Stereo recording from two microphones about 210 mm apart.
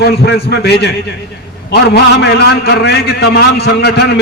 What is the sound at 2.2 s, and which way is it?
A man's voice, 50° left (ahead or behind).